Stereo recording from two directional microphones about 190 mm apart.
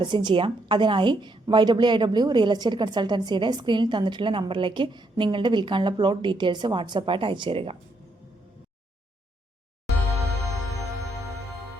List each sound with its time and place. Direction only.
0.0 s a woman's voice: 25° right (ahead or behind)